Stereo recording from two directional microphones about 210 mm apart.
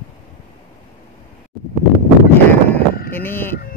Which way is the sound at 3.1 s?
10° left (ahead or behind).